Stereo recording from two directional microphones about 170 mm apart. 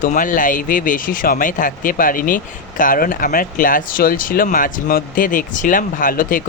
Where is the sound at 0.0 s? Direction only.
50° left (ahead or behind).